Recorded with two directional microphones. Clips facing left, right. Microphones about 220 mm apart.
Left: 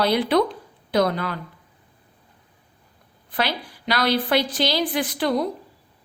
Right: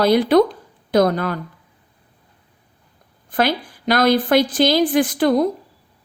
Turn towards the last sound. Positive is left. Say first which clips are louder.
# right 7 dB
turn(degrees=-45)  # may be behind; listen again after turning